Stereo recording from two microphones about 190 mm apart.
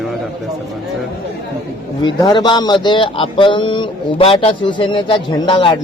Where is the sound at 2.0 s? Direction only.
25° left (ahead or behind).